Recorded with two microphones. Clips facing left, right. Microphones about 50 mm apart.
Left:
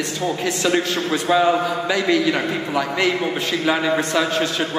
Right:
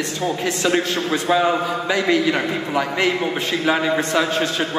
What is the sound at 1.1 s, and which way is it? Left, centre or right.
A man's voice, centre.